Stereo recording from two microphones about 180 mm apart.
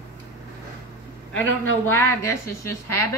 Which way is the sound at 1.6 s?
15° left (ahead or behind).